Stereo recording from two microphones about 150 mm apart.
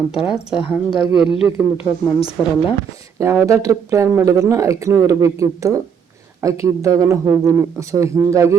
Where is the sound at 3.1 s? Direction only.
20° right (ahead or behind).